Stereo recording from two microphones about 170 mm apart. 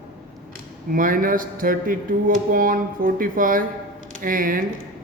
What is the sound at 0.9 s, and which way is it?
Speech, 55° right (ahead or behind).